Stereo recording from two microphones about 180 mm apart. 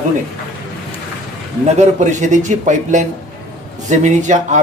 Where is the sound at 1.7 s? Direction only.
40° right (ahead or behind).